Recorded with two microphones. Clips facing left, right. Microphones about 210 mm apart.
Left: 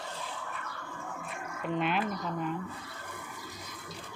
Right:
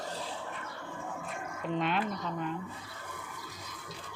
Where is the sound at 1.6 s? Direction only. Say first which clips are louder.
Left 1 dB; 5° left (ahead or behind).